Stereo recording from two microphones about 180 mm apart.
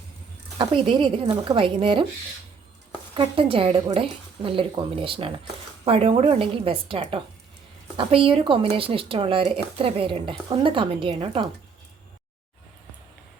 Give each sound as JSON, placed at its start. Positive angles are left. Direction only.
{"t": 0.6, "sound": "a woman's voice", "side_deg": -25}
{"t": 3.2, "sound": "a woman's voice", "side_deg": -30}